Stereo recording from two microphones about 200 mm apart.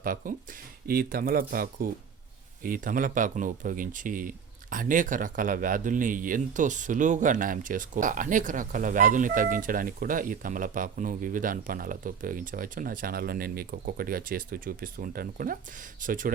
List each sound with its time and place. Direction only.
0.0 s speech: 45° right (ahead or behind)